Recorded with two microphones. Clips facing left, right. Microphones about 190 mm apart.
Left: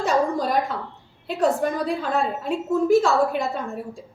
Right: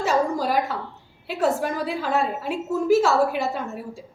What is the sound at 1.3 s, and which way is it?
A woman's voice, 5° right (ahead or behind).